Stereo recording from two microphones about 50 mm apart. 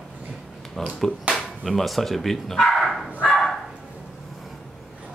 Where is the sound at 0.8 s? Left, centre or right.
Centre.